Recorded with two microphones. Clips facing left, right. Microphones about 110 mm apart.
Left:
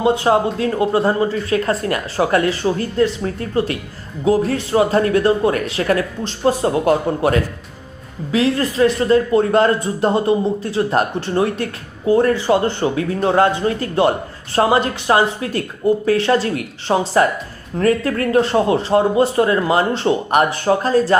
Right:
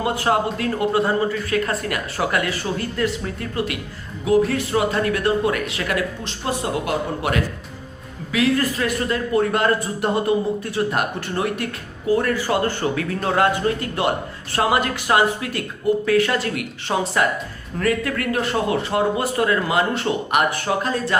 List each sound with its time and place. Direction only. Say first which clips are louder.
0.0 s a man's voice: left 5 dB; 25° left (ahead or behind)